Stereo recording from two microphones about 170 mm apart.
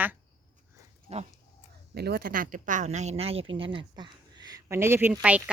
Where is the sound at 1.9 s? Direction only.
70° right (ahead or behind); by 5.4 s 10° right (ahead or behind).